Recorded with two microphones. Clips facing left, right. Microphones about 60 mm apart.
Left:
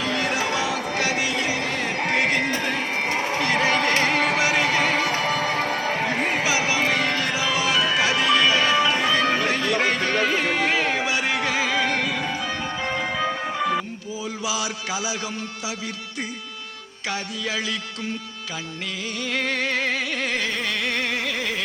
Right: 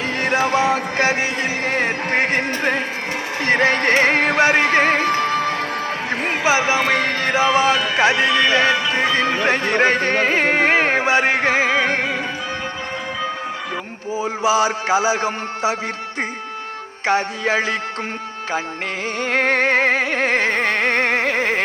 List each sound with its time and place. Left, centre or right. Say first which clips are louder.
0.0 s music: right 5 dB; right
6.4 s music: right 5 dB; right
14.2 s music: right 11 dB; right
17.1 s music: right 10 dB; right
19.2 s music: right 8 dB; right